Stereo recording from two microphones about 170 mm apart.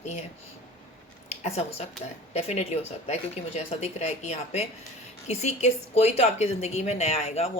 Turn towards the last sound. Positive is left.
turn(degrees=40)  # may be behind; listen again after turning